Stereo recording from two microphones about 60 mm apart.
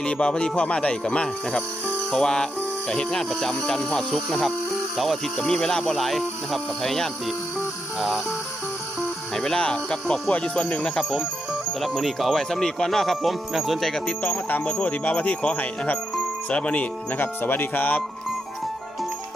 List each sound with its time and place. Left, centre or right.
0.0 s speech: centre
9.3 s speech: centre
11.8 s speech: centre
14.2 s speech: left
17.2 s speech: left